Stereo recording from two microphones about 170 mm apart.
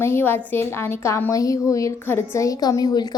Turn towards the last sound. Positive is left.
turn(degrees=20)  # may be behind; listen again after turning